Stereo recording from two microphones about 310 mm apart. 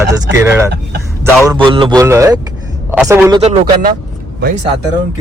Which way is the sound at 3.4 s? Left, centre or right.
Right.